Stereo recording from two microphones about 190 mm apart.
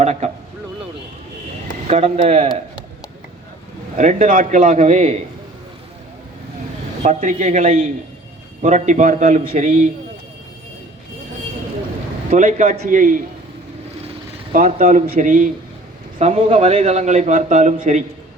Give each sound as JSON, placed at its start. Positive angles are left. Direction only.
{"t": 0.0, "sound": "a sound", "side_deg": -35}
{"t": 1.9, "sound": "a man's voice", "side_deg": -35}
{"t": 3.9, "sound": "a man's voice", "side_deg": -40}
{"t": 7.0, "sound": "a man's voice", "side_deg": -40}
{"t": 12.3, "sound": "a man's voice", "side_deg": -40}
{"t": 14.5, "sound": "a man's voice", "side_deg": -45}